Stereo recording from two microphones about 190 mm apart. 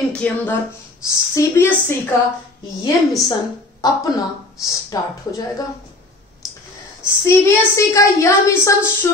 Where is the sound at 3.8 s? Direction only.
20° left (ahead or behind).